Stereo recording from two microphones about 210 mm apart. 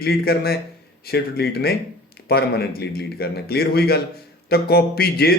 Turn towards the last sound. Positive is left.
turn(degrees=45)  # may be behind; listen again after turning